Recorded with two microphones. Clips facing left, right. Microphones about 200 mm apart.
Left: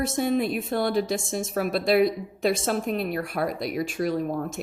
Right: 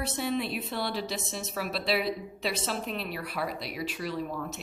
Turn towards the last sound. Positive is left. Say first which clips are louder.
# left 8 dB
turn(degrees=50)  # may be behind; listen again after turning